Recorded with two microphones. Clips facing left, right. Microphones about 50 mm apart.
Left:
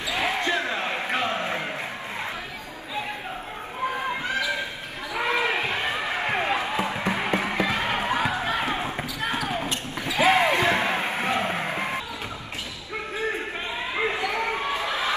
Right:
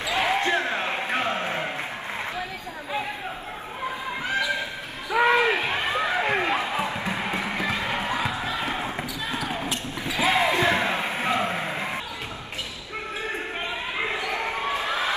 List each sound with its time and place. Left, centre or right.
0.0 s basketball bounce: right
5.1 s a sound: right
6.4 s basketball bounce: right
7.1 s music: left
9.2 s basketball bounce: left
11.6 s music: left
13.9 s basketball bounce: left